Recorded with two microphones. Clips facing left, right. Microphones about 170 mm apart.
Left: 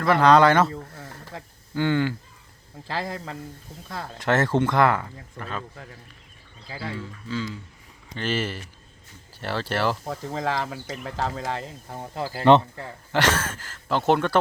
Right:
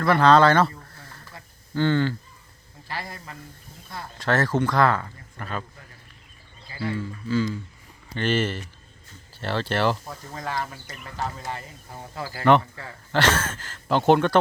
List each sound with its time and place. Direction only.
0.0 s speech: 15° left (ahead or behind)
1.7 s speech: 10° left (ahead or behind)
2.8 s speech: 90° left
4.2 s speech: 20° left (ahead or behind)
5.4 s speech: centre (ahead or behind)
7.3 s speech: 5° right (ahead or behind)
10.1 s speech: 90° left
12.1 s speech: 20° left (ahead or behind); by 14.3 s centre (ahead or behind)